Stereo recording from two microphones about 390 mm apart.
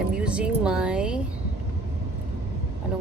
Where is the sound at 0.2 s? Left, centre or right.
Centre.